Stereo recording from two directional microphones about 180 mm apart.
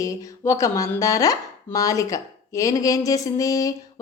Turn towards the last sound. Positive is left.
turn(degrees=20)  # may be behind; listen again after turning